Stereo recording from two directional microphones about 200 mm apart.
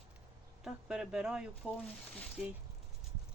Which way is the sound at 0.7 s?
5° right (ahead or behind).